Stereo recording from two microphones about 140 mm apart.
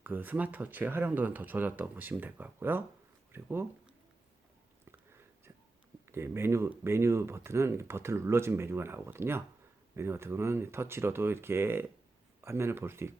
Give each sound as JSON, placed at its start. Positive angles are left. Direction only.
{"t": 0.0, "sound": "speech", "side_deg": -15}
{"t": 6.1, "sound": "speech", "side_deg": -20}